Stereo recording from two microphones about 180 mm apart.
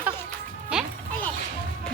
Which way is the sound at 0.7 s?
5° right (ahead or behind).